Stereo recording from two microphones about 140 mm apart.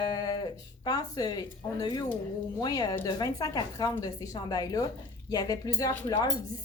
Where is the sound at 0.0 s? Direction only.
30° left (ahead or behind).